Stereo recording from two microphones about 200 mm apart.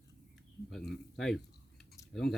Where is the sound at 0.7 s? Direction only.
Centre (ahead or behind).